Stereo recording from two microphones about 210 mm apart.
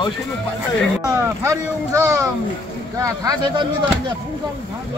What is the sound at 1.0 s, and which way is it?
Speech, 15° right (ahead or behind).